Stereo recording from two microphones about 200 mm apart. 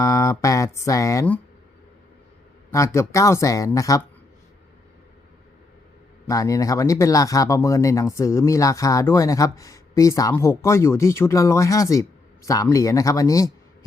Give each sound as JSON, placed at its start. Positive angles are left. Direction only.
{"t": 0.0, "sound": "speech", "side_deg": 15}
{"t": 2.6, "sound": "speech", "side_deg": 15}
{"t": 6.2, "sound": "speech", "side_deg": 15}